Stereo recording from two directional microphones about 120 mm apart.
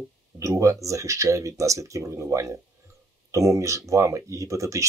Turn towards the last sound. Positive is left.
turn(degrees=-25)  # may be behind; listen again after turning